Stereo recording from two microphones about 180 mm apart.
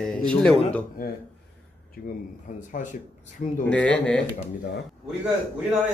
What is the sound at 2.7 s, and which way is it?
Speech, 45° left (ahead or behind).